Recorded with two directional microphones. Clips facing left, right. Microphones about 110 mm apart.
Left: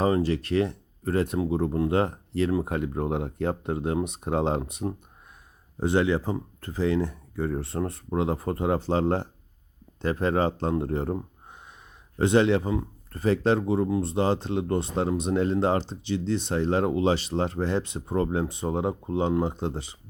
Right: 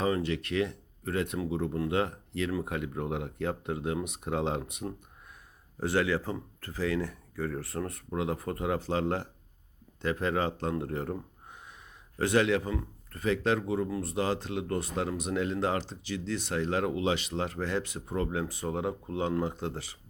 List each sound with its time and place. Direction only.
0.0 s speech: 35° left (ahead or behind)